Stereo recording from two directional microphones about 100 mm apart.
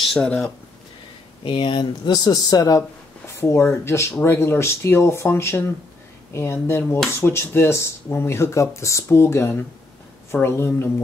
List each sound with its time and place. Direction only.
0.0 s speech: 5° left (ahead or behind)
1.4 s speech: 60° left (ahead or behind)
2.0 s speech: 40° left (ahead or behind); by 10.9 s 25° left (ahead or behind)